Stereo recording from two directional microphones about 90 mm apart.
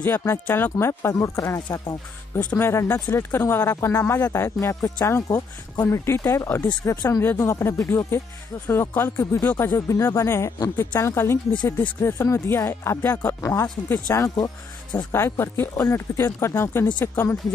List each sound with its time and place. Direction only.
0.0 s speech: 25° left (ahead or behind)
6.6 s speech: 45° left (ahead or behind); by 11.3 s 30° left (ahead or behind)
11.5 s speech: 60° left (ahead or behind)
12.0 s speech: 30° left (ahead or behind)
14.3 s speech: 50° left (ahead or behind)
15.1 s speech: 30° left (ahead or behind)
15.7 s speech: 40° left (ahead or behind); by 17.4 s 25° left (ahead or behind)